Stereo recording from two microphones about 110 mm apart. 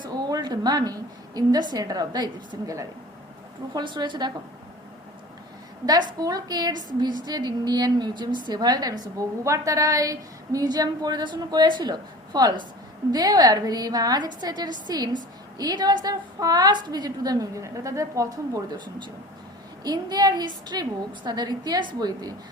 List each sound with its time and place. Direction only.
0.0 s a sound: 40° right (ahead or behind)
1.4 s a woman's voice: 40° right (ahead or behind)
5.8 s a woman's voice: 35° right (ahead or behind)
19.8 s a woman's voice: 35° right (ahead or behind)